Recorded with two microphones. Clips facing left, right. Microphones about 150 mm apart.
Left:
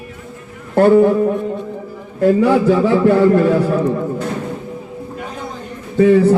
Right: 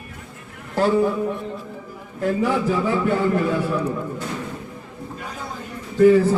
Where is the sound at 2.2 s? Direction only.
80° left.